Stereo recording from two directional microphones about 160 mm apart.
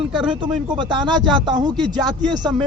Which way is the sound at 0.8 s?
30° right (ahead or behind).